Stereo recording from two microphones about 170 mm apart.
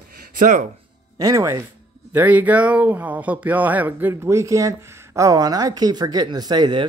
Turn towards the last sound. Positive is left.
turn(degrees=-25)  # may be behind; listen again after turning